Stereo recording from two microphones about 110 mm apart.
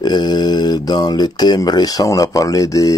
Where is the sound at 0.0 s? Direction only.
40° left (ahead or behind).